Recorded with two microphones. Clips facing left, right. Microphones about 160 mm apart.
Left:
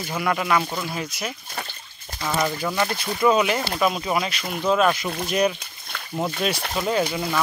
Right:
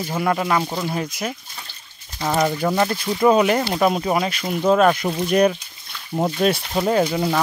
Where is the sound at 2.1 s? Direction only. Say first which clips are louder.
Right 4 dB; 45° right (ahead or behind).